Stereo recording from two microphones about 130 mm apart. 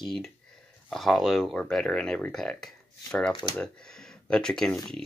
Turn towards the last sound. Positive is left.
turn(degrees=5)  # may be behind; listen again after turning